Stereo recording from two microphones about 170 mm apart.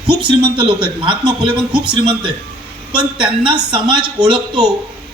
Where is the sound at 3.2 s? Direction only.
30° right (ahead or behind).